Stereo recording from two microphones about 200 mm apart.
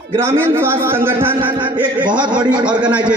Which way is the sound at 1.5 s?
25° right (ahead or behind).